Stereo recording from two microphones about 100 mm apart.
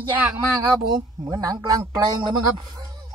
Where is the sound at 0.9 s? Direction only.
40° right (ahead or behind).